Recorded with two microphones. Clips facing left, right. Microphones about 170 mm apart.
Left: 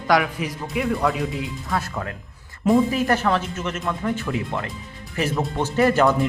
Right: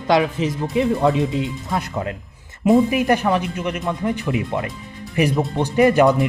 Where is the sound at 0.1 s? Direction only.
25° right (ahead or behind).